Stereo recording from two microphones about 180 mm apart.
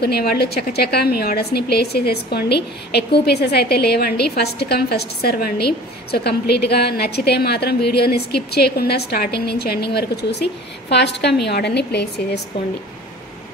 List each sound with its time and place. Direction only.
0.0 s a woman's voice: 60° left (ahead or behind)